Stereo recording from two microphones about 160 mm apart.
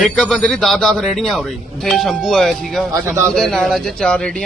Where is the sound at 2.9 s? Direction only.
15° right (ahead or behind).